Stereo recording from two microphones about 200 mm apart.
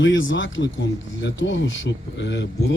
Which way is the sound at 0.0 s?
70° left (ahead or behind).